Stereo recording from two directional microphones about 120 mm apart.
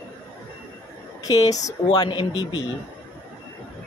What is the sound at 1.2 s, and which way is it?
Speech, 30° left (ahead or behind).